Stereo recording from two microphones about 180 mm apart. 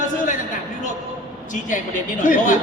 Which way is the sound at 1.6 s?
45° left (ahead or behind).